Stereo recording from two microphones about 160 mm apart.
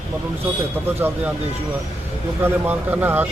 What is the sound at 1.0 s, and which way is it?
Speech, 15° right (ahead or behind).